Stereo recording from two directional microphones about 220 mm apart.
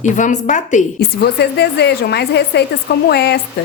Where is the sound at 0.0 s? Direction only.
35° left (ahead or behind).